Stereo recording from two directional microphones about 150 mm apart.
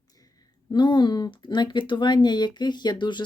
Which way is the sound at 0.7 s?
30° left (ahead or behind).